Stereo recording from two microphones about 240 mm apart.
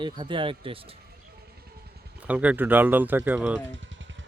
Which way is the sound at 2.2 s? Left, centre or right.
Centre.